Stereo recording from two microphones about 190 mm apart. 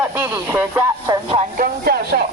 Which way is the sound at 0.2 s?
10° right (ahead or behind).